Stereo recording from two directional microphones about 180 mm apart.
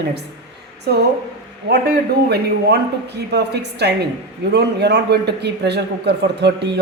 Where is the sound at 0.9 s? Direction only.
65° right (ahead or behind).